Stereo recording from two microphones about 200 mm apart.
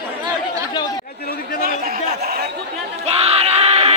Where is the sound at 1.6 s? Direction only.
50° right (ahead or behind).